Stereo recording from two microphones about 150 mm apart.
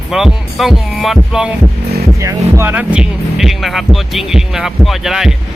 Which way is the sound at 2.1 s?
20° right (ahead or behind).